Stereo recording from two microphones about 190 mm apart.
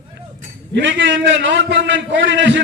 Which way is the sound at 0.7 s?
70° right (ahead or behind).